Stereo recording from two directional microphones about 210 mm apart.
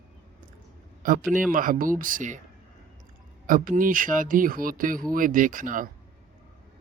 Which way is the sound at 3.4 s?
40° right (ahead or behind).